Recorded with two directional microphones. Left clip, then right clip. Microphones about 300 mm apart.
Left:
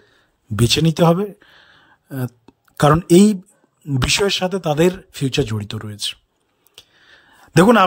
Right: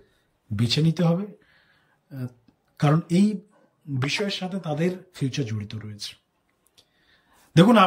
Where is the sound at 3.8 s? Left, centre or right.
Centre.